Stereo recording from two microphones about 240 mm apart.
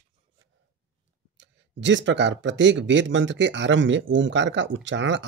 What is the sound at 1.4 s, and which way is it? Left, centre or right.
Speech, right.